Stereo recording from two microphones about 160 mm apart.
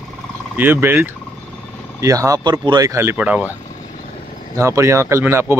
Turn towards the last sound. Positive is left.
turn(degrees=-15)  # may be behind; listen again after turning